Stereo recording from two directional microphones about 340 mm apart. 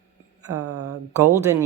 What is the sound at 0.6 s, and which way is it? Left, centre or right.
Speech, right.